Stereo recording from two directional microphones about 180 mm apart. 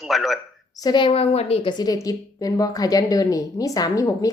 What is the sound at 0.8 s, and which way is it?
Speech, 25° left (ahead or behind).